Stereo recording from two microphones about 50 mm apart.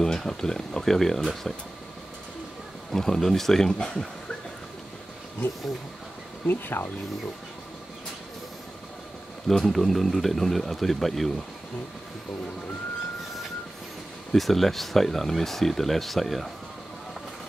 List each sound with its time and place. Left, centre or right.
0.0 s speech: centre
2.9 s speech: centre
3.7 s speech: centre
6.4 s speech: left
9.5 s speech: centre
14.3 s speech: centre